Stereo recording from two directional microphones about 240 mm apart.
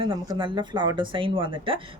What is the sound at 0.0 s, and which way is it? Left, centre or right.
Speech, centre.